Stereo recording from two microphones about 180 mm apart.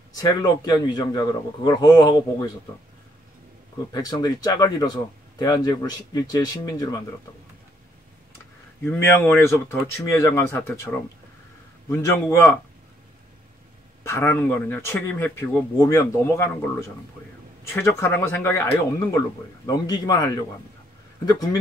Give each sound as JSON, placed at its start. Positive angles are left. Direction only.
{"t": 0.1, "sound": "speech", "side_deg": 20}
{"t": 3.9, "sound": "speech", "side_deg": 20}
{"t": 8.8, "sound": "speech", "side_deg": 10}
{"t": 14.0, "sound": "speech", "side_deg": 15}
{"t": 21.3, "sound": "speech", "side_deg": 20}